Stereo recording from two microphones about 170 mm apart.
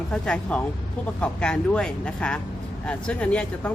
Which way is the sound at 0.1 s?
5° left (ahead or behind).